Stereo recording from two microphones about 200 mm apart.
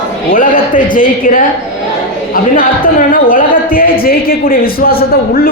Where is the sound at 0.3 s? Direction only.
45° left (ahead or behind).